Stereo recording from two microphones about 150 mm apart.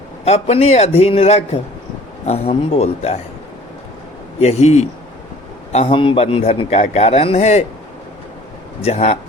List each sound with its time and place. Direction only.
0.3 s a man's voice: 45° left (ahead or behind)
4.4 s a man's voice: 45° left (ahead or behind)
8.8 s a man's voice: 45° left (ahead or behind)